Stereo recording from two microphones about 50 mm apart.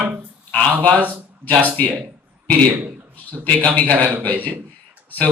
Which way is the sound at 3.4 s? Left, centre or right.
Left.